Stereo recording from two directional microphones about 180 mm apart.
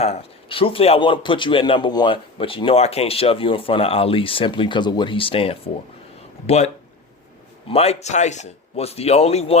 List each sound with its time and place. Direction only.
0.0 s a man's voice: 35° left (ahead or behind)
7.7 s speech: 35° left (ahead or behind)